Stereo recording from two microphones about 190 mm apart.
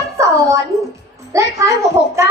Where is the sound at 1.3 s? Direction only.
15° right (ahead or behind).